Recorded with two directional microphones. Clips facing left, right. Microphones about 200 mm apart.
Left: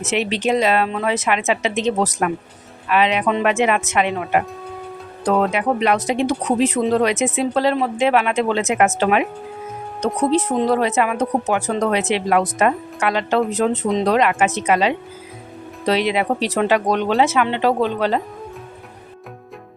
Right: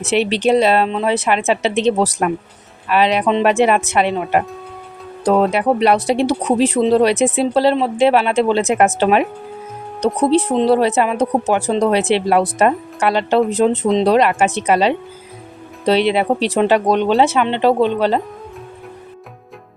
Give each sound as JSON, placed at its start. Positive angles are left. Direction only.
{"t": 0.0, "sound": "speech", "side_deg": -35}